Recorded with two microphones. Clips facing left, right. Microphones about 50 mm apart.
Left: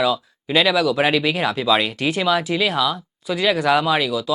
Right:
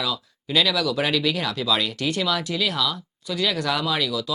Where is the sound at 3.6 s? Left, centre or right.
Left.